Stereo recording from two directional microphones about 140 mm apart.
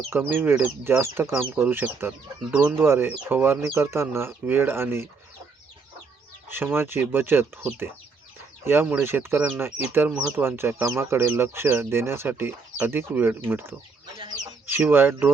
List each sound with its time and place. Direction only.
0.1 s speech: 15° right (ahead or behind)
6.5 s speech: 15° right (ahead or behind)
10.1 s speech: centre (ahead or behind)
10.3 s speech: 15° right (ahead or behind)